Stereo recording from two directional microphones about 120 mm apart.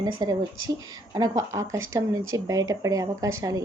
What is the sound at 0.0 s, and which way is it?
Speech, 35° right (ahead or behind).